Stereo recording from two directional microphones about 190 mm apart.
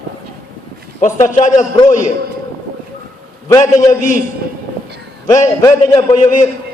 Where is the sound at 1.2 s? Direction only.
40° left (ahead or behind).